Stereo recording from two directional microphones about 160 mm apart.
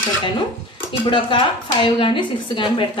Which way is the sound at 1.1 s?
30° left (ahead or behind).